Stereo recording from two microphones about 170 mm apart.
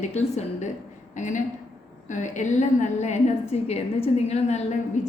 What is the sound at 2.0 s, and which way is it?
A woman's voice, 45° left (ahead or behind).